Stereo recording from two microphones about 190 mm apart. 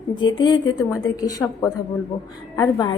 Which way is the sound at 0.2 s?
25° left (ahead or behind).